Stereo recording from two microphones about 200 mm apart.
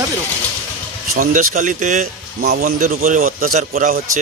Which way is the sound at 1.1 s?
45° right (ahead or behind).